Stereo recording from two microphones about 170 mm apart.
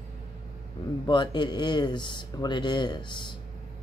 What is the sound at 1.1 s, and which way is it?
Speech, 25° left (ahead or behind).